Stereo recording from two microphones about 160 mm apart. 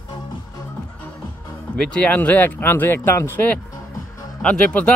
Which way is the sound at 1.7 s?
5° left (ahead or behind).